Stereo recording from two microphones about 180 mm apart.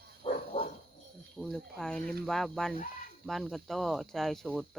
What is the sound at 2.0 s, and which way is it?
Speech, 60° right (ahead or behind).